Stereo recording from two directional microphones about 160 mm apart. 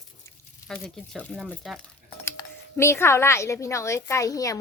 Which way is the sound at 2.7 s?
15° left (ahead or behind).